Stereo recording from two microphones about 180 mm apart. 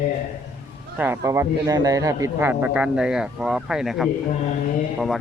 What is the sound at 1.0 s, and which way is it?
A man's voice, 15° right (ahead or behind).